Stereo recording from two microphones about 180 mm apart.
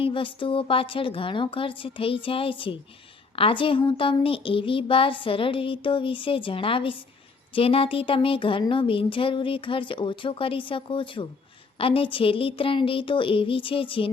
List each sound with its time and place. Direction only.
0.0 s speech: 30° left (ahead or behind)